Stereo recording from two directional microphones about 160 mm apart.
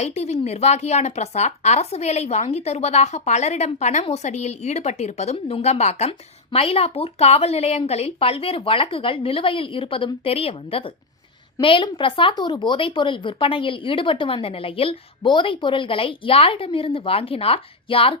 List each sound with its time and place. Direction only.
0.0 s a woman's voice: 40° left (ahead or behind)